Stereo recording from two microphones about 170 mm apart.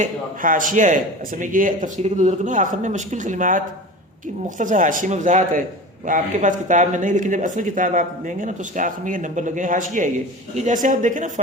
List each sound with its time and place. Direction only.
0.0 s speech: 50° right (ahead or behind)